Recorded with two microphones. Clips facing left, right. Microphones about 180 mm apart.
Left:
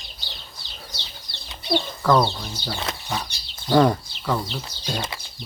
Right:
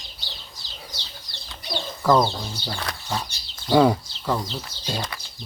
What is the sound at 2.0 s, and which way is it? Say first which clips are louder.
Speech: right 1 dB; 10° right (ahead or behind).